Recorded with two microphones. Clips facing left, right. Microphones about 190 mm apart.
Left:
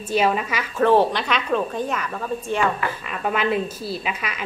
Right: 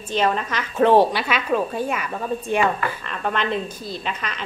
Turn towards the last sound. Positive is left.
turn(degrees=10)  # may be behind; listen again after turning